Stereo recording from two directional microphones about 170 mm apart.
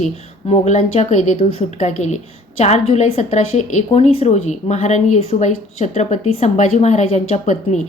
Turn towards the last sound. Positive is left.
turn(degrees=45)  # may be behind; listen again after turning